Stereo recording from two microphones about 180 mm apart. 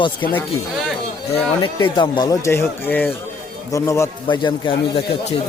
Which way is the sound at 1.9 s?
25° left (ahead or behind).